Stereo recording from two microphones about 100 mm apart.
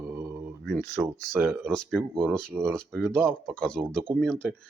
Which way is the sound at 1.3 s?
20° right (ahead or behind).